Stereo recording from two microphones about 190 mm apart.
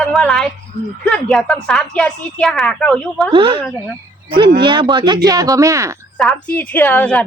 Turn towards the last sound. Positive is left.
turn(degrees=5)  # may be behind; listen again after turning